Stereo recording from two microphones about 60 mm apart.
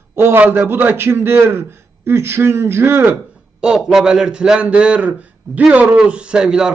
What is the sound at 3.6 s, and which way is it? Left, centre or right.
A man's voice, centre.